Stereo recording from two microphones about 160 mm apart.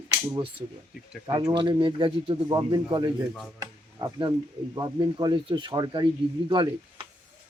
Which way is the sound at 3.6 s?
25° right (ahead or behind).